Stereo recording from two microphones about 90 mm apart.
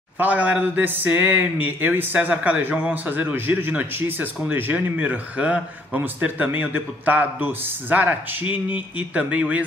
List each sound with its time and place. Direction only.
0.2 s speech: 15° right (ahead or behind)